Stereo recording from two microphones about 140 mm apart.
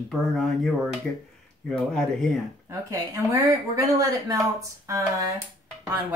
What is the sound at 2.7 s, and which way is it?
A woman's voice, 20° right (ahead or behind).